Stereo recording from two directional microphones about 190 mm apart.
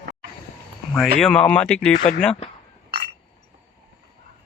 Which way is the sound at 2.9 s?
60° right (ahead or behind).